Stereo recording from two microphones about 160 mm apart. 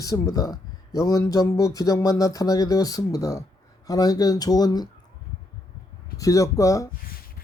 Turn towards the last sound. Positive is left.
turn(degrees=20)  # may be behind; listen again after turning